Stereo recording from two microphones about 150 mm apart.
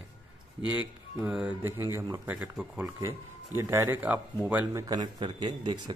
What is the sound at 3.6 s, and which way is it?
Speech, 20° right (ahead or behind).